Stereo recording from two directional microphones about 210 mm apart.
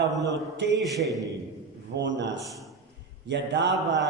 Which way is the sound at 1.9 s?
60° right (ahead or behind).